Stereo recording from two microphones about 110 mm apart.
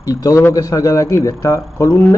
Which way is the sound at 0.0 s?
30° left (ahead or behind).